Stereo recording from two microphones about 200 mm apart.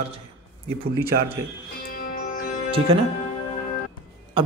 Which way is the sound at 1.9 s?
45° left (ahead or behind).